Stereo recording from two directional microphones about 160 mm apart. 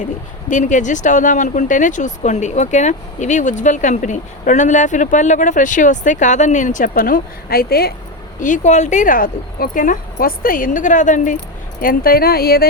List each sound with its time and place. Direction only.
0.0 s speech: 50° left (ahead or behind); by 7.9 s 75° left (ahead or behind)
8.4 s speech: 55° left (ahead or behind)
11.8 s speech: 65° left (ahead or behind)